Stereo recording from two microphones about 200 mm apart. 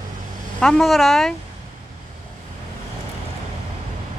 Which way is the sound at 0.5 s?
5° left (ahead or behind).